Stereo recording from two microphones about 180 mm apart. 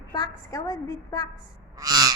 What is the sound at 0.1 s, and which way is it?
A woman's voice, 20° left (ahead or behind).